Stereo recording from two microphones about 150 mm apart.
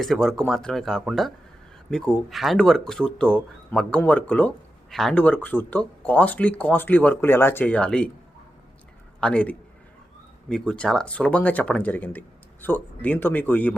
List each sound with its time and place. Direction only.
0.0 s speech: centre (ahead or behind)
9.2 s speech: 10° left (ahead or behind)